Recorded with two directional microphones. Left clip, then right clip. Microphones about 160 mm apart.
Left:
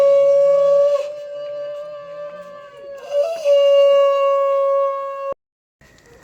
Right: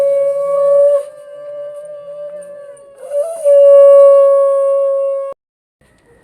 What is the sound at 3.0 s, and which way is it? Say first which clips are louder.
Wind instrument: right 4 dB; 25° right (ahead or behind).